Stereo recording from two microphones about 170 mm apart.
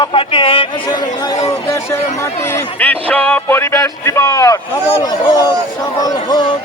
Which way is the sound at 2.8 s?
10° left (ahead or behind).